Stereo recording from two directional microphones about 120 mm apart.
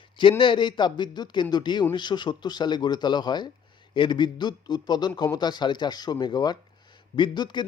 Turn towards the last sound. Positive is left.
turn(degrees=40)  # may be behind; listen again after turning